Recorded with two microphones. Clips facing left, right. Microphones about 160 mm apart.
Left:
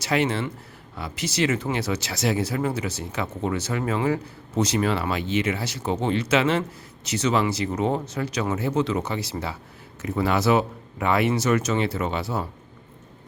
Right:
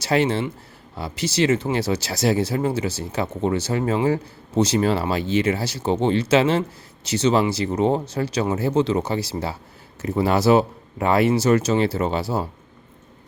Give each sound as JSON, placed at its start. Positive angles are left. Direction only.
{"t": 0.0, "sound": "speech", "side_deg": -30}